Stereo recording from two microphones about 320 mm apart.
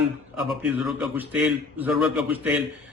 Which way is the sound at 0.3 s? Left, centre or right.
Centre.